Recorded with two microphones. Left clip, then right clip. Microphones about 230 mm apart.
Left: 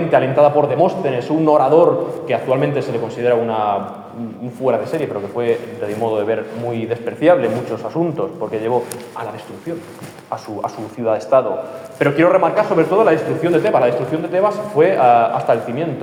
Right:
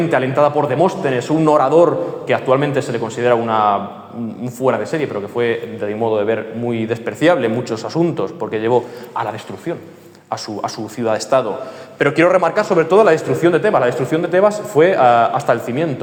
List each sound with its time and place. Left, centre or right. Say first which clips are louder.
0.1 s a man's voice: left 5 dB; right
10.6 s a man's voice: left 1 dB; right